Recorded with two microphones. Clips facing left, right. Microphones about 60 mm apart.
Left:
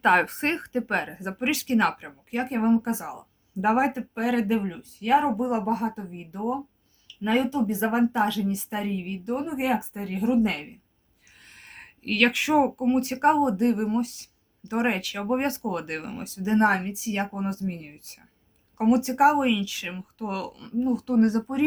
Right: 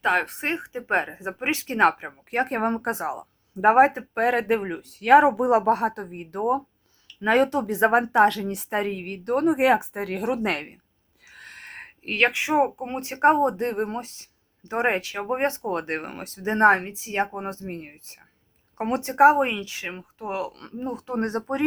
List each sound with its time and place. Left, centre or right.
0.0 s a woman's voice: centre
0.9 s speech: right
2.3 s speech: right
11.3 s a sound: right
11.8 s speech: right
20.6 s speech: right